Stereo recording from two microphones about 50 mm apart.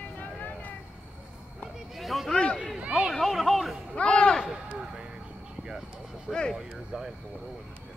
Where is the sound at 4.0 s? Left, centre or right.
Left.